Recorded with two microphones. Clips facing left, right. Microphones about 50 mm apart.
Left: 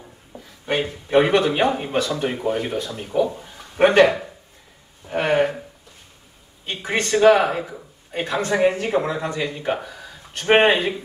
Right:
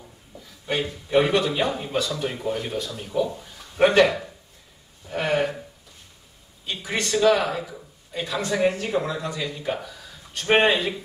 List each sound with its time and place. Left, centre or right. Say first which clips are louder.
0.3 s a sound: left 4 dB; left
0.9 s a man's voice: left 3 dB; left
6.6 s speech: left 4 dB; left